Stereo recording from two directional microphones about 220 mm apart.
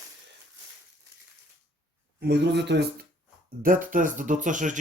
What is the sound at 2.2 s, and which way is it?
Speech, 50° right (ahead or behind).